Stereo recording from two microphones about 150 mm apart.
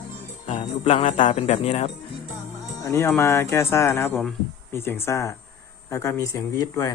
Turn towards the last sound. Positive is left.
turn(degrees=20)  # may be behind; listen again after turning